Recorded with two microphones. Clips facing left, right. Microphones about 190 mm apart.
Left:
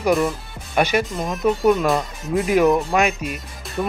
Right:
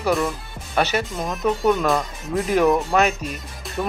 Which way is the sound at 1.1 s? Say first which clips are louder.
Left 2 dB; centre (ahead or behind).